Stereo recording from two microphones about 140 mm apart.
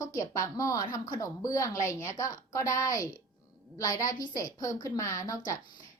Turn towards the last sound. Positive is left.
turn(degrees=25)  # may be behind; listen again after turning